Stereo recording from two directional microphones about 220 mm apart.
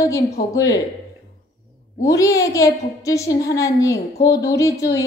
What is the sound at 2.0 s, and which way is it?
A woman's voice, 15° left (ahead or behind).